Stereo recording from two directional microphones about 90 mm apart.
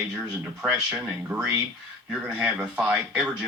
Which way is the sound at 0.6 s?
5° right (ahead or behind).